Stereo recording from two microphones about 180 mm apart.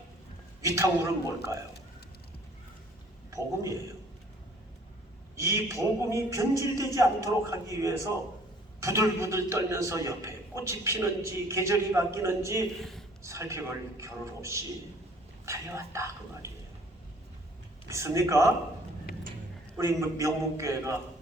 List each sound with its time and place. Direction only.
0.6 s a man's voice: 15° right (ahead or behind)
3.2 s a man's voice: 15° right (ahead or behind)
5.4 s a man's voice: 15° right (ahead or behind)
12.8 s speech: centre (ahead or behind)
13.2 s a man's voice: 15° right (ahead or behind)
17.8 s a man's voice: 15° right (ahead or behind)
19.7 s a man's voice: 15° right (ahead or behind)